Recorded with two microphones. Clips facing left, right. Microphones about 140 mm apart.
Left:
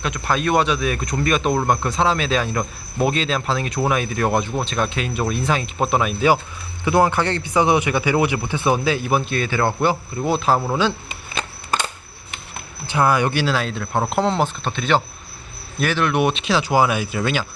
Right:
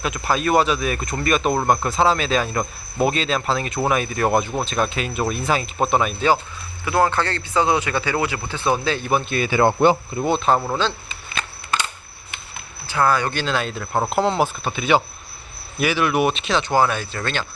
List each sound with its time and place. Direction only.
0.0 s speech: 5° right (ahead or behind)
6.8 s speech: 15° left (ahead or behind)
9.4 s speech: 15° right (ahead or behind)
10.2 s speech: 5° left (ahead or behind)
12.9 s speech: 15° left (ahead or behind)